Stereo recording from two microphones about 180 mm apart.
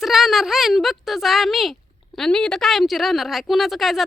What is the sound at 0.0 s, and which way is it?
A woman's voice, centre (ahead or behind).